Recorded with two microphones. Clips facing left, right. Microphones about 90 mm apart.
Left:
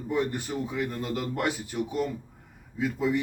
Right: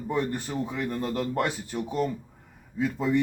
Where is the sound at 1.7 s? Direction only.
40° right (ahead or behind).